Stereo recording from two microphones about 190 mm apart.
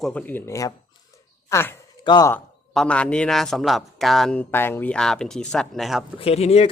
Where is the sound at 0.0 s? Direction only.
5° left (ahead or behind).